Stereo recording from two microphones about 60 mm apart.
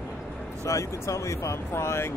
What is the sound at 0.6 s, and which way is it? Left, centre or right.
Speech, left.